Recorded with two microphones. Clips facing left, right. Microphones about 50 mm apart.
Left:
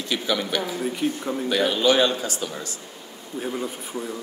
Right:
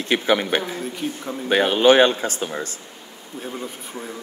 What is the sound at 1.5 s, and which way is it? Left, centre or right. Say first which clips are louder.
Speech: right 6 dB; right.